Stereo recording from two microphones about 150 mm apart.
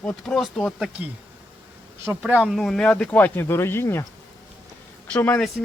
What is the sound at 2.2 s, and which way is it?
Speech, 5° right (ahead or behind).